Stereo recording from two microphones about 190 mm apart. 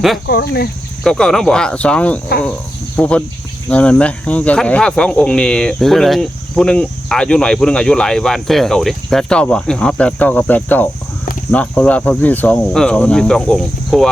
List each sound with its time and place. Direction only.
0.3 s speech: 55° left (ahead or behind)
1.0 s speech: centre (ahead or behind)